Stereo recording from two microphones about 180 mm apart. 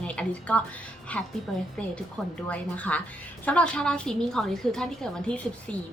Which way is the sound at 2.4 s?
10° left (ahead or behind).